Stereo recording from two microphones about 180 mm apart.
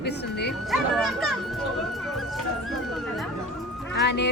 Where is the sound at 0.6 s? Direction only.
Centre (ahead or behind).